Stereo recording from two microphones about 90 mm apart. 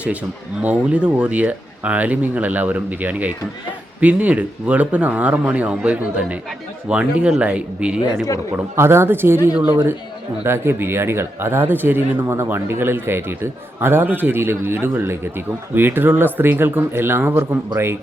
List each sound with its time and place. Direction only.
0.0 s speech: 15° right (ahead or behind)
8.7 s speech: 30° right (ahead or behind)